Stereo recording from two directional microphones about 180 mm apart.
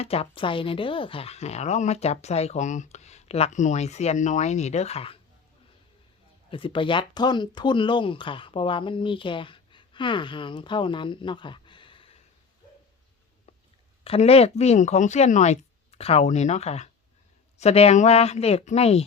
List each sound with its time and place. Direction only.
0.0 s speech: 35° left (ahead or behind)
6.5 s speech: 30° left (ahead or behind)
14.0 s speech: 35° left (ahead or behind)